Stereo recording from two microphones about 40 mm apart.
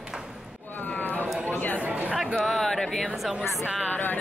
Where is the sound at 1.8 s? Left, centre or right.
Right.